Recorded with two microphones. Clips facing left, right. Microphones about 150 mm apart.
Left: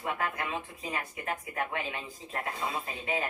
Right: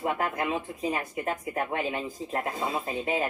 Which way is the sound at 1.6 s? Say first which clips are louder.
Right 6 dB; 40° right (ahead or behind).